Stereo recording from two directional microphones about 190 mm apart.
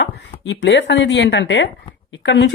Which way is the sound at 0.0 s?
70° left (ahead or behind).